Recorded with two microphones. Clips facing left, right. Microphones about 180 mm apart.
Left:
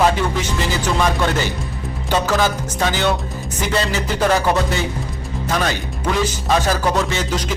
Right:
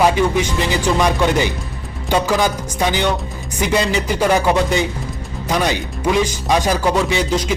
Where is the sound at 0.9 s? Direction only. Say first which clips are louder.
Right 2 dB; 15° right (ahead or behind).